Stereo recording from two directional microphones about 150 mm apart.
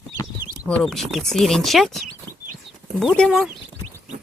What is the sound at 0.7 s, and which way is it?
Speech, 5° left (ahead or behind).